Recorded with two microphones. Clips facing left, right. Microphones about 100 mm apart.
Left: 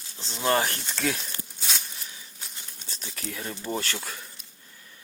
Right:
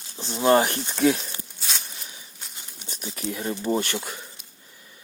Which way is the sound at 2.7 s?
15° right (ahead or behind).